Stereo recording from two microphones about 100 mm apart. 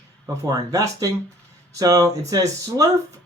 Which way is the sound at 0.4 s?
40° right (ahead or behind).